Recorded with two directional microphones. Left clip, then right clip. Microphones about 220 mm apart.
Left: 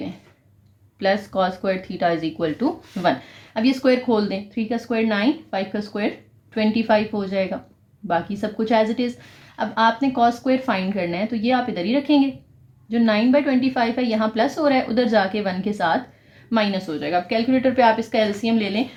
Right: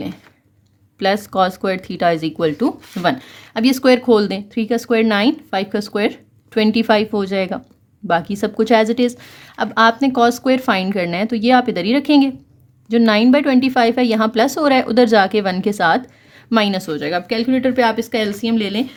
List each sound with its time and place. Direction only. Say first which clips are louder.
0.9 s speech: right 4 dB; 45° right (ahead or behind)